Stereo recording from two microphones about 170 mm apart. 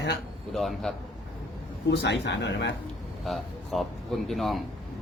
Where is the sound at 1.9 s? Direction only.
90° left.